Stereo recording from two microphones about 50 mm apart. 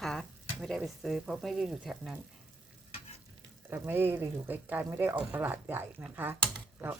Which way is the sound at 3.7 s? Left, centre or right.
Right.